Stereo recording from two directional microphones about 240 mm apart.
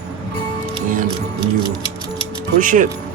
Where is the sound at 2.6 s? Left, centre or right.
Right.